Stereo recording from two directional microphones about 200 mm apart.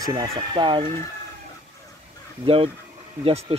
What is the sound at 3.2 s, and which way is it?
Speech, 30° right (ahead or behind).